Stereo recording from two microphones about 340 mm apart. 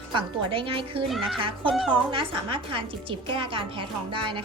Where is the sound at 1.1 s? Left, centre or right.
Centre.